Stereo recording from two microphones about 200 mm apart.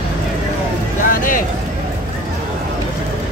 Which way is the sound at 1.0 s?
45° left (ahead or behind).